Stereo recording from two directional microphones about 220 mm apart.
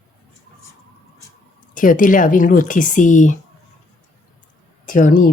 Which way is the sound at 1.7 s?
35° left (ahead or behind).